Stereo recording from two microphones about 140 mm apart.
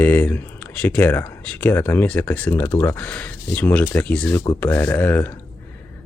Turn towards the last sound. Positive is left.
turn(degrees=10)  # may be behind; listen again after turning